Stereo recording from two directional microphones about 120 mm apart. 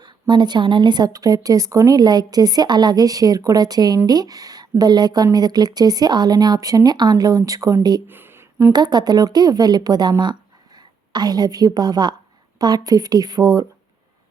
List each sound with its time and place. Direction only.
0.0 s speech: 35° right (ahead or behind)
8.0 s a sound: 15° right (ahead or behind)
8.7 s speech: 35° right (ahead or behind)